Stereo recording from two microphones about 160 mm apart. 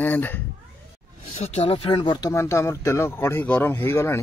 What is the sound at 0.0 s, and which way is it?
Speech, 10° left (ahead or behind).